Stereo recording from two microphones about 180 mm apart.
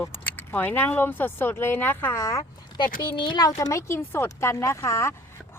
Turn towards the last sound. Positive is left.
turn(degrees=15)  # may be behind; listen again after turning